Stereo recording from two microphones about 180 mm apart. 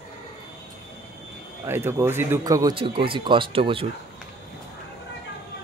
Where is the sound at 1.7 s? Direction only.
15° right (ahead or behind); by 3.8 s 30° right (ahead or behind).